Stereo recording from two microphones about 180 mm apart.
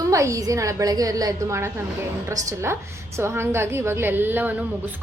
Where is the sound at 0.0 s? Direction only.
15° right (ahead or behind).